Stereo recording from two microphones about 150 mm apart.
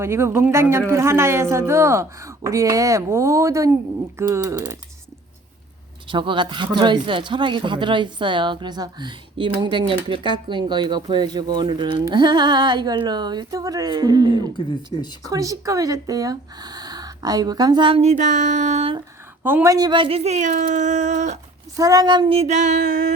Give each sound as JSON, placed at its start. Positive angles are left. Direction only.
{"t": 0.0, "sound": "speech", "side_deg": -15}
{"t": 6.1, "sound": "speech", "side_deg": -35}
{"t": 19.4, "sound": "speech", "side_deg": -15}
{"t": 21.8, "sound": "speech", "side_deg": -25}
{"t": 22.4, "sound": "speech", "side_deg": -50}